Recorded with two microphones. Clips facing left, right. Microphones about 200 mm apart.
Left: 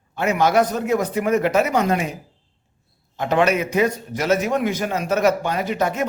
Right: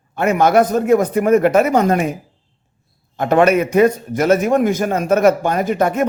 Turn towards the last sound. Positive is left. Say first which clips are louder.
# right 5 dB
turn(degrees=-55)  # may be behind; listen again after turning